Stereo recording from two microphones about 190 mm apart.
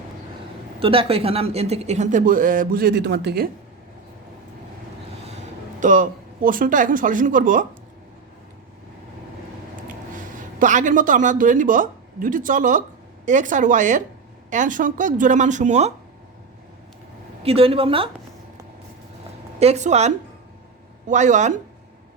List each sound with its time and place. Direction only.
0.8 s speech: 30° right (ahead or behind); by 3.5 s 60° right (ahead or behind)
5.8 s a woman's voice: 45° right (ahead or behind)
10.6 s a woman's voice: 40° right (ahead or behind)
17.4 s speech: 30° right (ahead or behind)
19.5 s speech: 35° right (ahead or behind)